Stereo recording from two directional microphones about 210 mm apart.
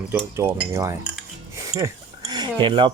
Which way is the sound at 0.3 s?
10° right (ahead or behind).